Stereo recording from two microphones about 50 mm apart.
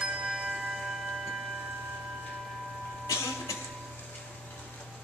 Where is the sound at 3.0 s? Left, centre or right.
Left.